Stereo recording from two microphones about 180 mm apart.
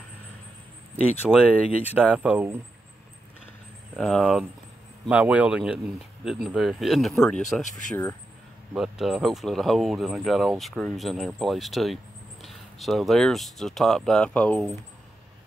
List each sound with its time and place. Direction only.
1.2 s speech: 5° right (ahead or behind)
4.0 s speech: centre (ahead or behind)
7.6 s speech: 45° left (ahead or behind)
7.9 s speech: 15° left (ahead or behind)
8.7 s speech: 5° right (ahead or behind)